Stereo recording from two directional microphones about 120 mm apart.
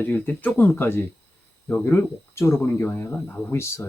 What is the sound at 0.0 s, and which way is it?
Speech, 15° left (ahead or behind).